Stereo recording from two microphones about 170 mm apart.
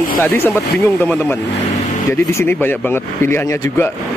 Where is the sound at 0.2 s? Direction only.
15° left (ahead or behind).